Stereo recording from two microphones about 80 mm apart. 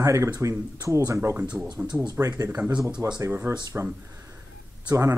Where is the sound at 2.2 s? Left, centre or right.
Right.